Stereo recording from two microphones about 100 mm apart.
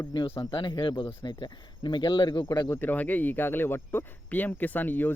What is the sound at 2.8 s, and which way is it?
Speech, 15° left (ahead or behind).